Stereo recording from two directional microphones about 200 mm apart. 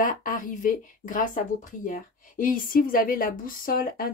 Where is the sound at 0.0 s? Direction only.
40° left (ahead or behind).